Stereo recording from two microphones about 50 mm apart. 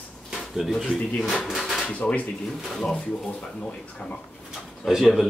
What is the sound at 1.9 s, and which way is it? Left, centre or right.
Speech, left.